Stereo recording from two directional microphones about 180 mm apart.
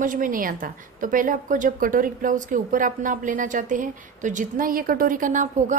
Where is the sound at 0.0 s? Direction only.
50° right (ahead or behind).